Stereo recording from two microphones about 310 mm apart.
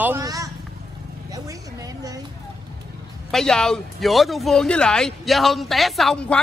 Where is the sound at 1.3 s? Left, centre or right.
Centre.